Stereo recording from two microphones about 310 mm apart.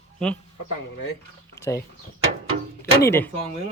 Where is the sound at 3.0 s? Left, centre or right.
Centre.